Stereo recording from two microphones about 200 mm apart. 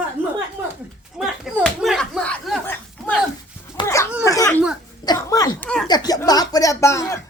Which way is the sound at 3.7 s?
20° left (ahead or behind).